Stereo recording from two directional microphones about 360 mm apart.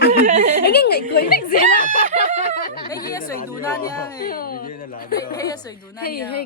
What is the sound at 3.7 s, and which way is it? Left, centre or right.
Speech, centre.